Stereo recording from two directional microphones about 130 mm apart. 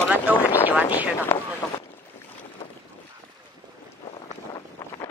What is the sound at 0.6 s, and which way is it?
Speech, 15° right (ahead or behind).